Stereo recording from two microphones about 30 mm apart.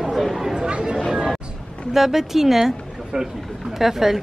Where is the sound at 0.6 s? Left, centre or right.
Right.